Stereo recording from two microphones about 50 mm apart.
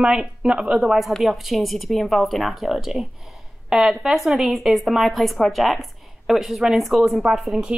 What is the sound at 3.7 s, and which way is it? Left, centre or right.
A woman's voice, centre.